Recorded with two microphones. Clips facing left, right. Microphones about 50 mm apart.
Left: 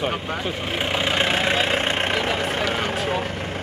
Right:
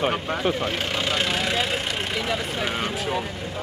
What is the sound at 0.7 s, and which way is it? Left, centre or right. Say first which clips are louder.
Speech: left 2 dB; centre.